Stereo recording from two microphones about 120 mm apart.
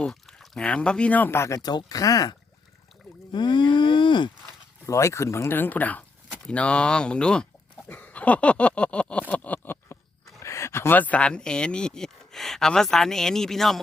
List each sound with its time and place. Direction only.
0.0 s speech: 5° left (ahead or behind); by 2.3 s 30° left (ahead or behind)
3.3 s moo: 40° left (ahead or behind)
4.9 s speech: 25° left (ahead or behind)
9.3 s a sound: 15° left (ahead or behind)
10.4 s speech: 25° left (ahead or behind); by 13.7 s 5° left (ahead or behind)